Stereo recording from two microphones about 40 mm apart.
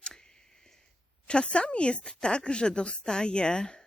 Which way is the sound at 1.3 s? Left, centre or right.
Left.